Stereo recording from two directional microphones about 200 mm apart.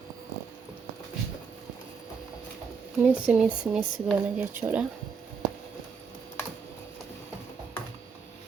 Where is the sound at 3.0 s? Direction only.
5° right (ahead or behind).